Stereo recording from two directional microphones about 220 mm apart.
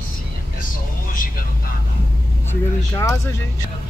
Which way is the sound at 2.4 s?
10° left (ahead or behind).